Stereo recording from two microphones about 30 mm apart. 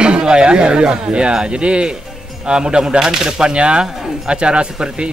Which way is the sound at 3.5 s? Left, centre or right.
Right.